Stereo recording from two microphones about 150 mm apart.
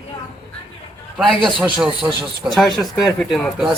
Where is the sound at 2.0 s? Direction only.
15° right (ahead or behind).